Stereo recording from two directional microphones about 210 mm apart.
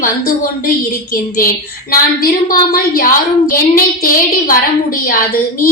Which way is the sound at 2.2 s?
45° left (ahead or behind).